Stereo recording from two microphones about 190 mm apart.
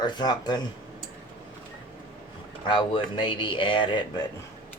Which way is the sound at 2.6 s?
25° left (ahead or behind).